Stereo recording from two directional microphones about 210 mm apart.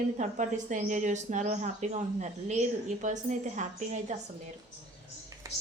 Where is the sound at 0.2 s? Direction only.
35° right (ahead or behind).